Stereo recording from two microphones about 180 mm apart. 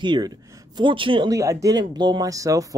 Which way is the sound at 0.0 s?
25° right (ahead or behind).